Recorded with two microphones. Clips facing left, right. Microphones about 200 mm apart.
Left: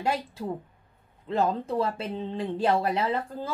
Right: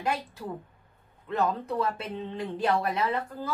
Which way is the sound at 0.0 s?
25° left (ahead or behind).